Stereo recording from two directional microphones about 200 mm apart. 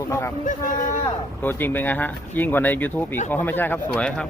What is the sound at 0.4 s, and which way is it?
Speech, 40° left (ahead or behind).